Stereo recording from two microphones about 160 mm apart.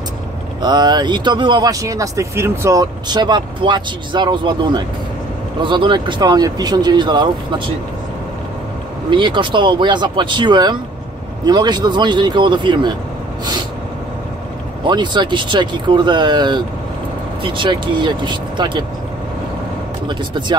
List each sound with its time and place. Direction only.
0.6 s speech: 25° right (ahead or behind)
9.1 s speech: 30° right (ahead or behind)
14.9 s speech: 30° right (ahead or behind)
20.1 s speech: 30° right (ahead or behind)